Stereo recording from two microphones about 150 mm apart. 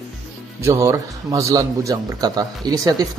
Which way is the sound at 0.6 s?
15° right (ahead or behind).